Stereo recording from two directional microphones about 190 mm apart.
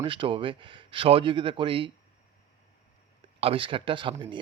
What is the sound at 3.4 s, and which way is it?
Speech, 30° right (ahead or behind).